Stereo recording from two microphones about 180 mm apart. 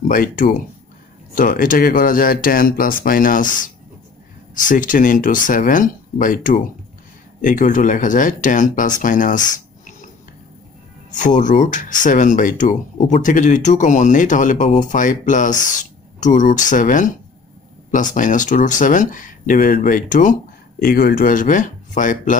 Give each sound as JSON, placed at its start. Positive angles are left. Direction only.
{"t": 0.1, "sound": "speech", "side_deg": 50}
{"t": 11.1, "sound": "speech", "side_deg": 45}